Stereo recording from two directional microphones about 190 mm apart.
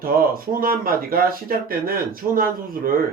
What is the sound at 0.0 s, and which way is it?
Speech, 50° right (ahead or behind).